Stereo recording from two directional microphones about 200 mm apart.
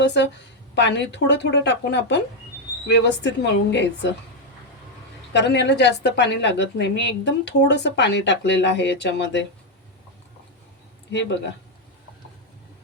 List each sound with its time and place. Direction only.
0.0 s a woman's voice: 60° left (ahead or behind)
5.3 s a woman's voice: 60° left (ahead or behind)
11.1 s a woman's voice: 60° left (ahead or behind)